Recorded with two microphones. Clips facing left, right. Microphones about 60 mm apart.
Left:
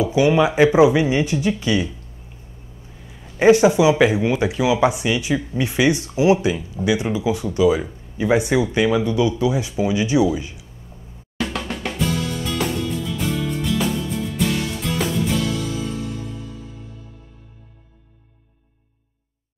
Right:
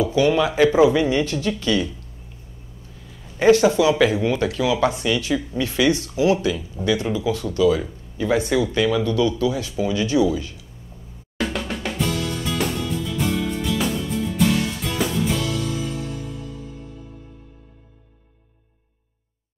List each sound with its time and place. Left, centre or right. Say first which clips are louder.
0.0 s speech: left 2 dB; centre
3.1 s speech: left 2 dB; centre
11.3 s drum: even; centre